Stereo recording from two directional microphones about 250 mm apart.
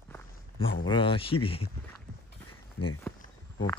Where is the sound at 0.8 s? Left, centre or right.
Centre.